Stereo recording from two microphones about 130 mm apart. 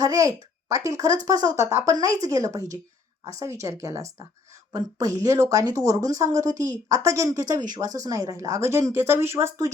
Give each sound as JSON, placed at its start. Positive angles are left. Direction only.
{"t": 0.0, "sound": "speech", "side_deg": -25}